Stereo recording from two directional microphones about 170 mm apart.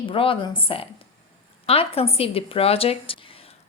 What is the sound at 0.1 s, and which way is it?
A woman's voice, 30° left (ahead or behind).